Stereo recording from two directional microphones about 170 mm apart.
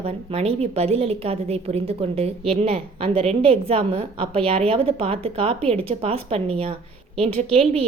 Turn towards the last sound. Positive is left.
turn(degrees=-35)  # may be behind; listen again after turning